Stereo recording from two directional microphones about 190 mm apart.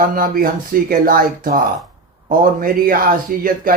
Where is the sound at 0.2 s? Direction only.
50° right (ahead or behind).